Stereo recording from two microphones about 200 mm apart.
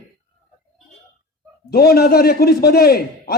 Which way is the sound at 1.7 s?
50° left (ahead or behind).